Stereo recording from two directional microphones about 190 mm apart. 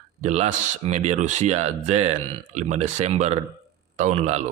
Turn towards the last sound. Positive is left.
turn(degrees=-35)  # may be behind; listen again after turning